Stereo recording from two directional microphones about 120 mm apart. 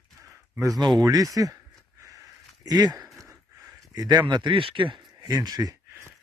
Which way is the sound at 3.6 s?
30° right (ahead or behind).